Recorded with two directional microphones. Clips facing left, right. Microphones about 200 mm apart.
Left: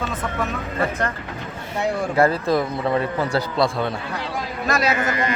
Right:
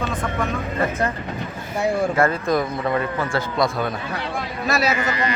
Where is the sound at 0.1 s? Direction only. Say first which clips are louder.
Right 1 dB; 5° left (ahead or behind).